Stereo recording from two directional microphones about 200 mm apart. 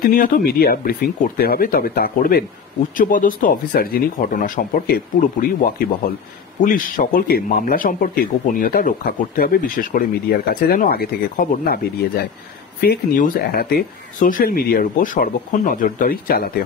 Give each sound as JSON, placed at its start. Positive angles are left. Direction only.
{"t": 0.0, "sound": "speech", "side_deg": 45}